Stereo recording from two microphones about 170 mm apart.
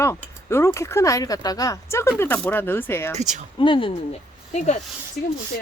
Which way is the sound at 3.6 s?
30° left (ahead or behind).